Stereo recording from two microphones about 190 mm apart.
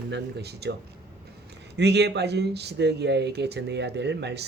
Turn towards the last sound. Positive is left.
turn(degrees=-60)  # may be behind; listen again after turning